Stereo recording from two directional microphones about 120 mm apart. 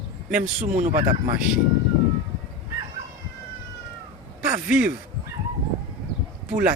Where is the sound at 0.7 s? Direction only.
90° right.